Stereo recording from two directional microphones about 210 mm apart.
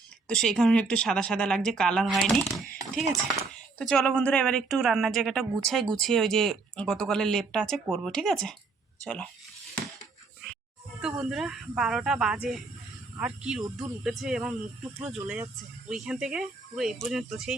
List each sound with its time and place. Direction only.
0.3 s speech: 5° left (ahead or behind)
3.8 s speech: 5° left (ahead or behind)
11.0 s speech: 5° right (ahead or behind)